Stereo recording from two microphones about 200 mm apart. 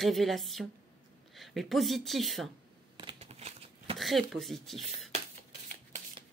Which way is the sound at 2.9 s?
30° right (ahead or behind).